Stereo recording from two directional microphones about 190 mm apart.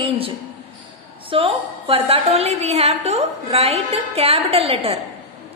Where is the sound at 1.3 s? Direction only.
30° right (ahead or behind).